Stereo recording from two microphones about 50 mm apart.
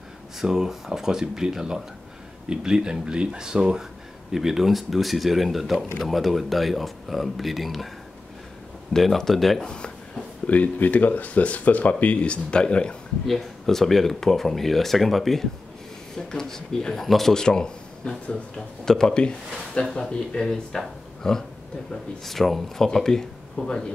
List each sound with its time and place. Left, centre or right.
0.4 s speech: centre
4.3 s speech: centre
8.9 s speech: centre
9.7 s a sound: centre
10.4 s speech: left
13.3 s speech: centre